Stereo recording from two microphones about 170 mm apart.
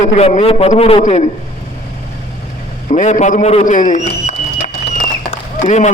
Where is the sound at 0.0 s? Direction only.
40° left (ahead or behind).